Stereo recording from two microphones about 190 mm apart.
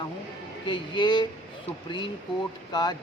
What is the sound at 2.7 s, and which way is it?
Speech, 20° left (ahead or behind).